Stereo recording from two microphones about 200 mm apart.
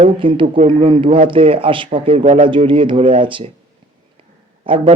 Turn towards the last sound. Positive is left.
turn(degrees=-25)  # may be behind; listen again after turning